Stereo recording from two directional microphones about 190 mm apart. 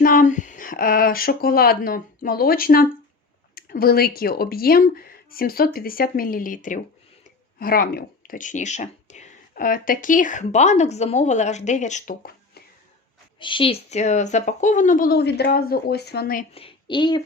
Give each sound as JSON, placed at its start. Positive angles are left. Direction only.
{"t": 0.0, "sound": "speech", "side_deg": 45}
{"t": 13.4, "sound": "speech", "side_deg": 25}
{"t": 16.6, "sound": "a woman's voice", "side_deg": 25}